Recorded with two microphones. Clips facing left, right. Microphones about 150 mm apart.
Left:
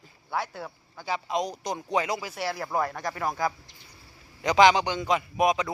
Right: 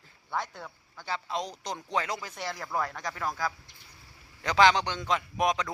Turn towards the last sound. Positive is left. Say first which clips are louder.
# left 4 dB
turn(degrees=10)  # may be behind; listen again after turning